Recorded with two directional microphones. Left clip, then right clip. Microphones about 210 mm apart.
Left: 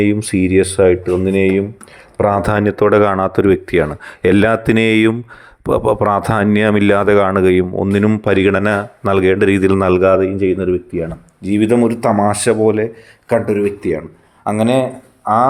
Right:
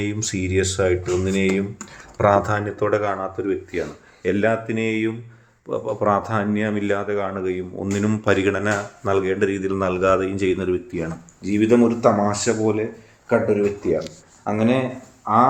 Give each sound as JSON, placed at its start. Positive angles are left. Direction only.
{"t": 0.0, "sound": "speech", "side_deg": 40}
{"t": 10.3, "sound": "speech", "side_deg": 25}
{"t": 11.4, "sound": "speech", "side_deg": 50}